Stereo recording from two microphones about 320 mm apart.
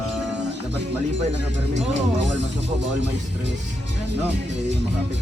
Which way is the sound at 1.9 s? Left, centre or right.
Right.